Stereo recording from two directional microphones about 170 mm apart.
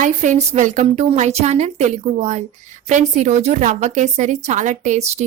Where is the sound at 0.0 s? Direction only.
45° right (ahead or behind).